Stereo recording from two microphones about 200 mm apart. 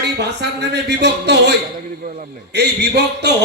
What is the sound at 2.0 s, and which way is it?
A man's voice, 45° right (ahead or behind).